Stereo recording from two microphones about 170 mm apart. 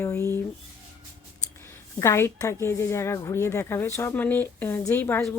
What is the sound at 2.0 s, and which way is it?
A woman's voice, 15° left (ahead or behind).